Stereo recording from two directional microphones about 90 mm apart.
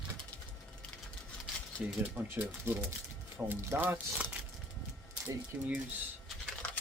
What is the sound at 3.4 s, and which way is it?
Speech, 20° right (ahead or behind).